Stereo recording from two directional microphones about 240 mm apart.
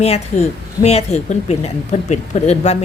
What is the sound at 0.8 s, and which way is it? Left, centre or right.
A woman's voice, left.